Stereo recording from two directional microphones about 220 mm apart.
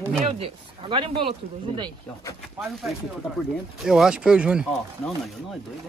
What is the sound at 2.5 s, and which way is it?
Speech, centre (ahead or behind).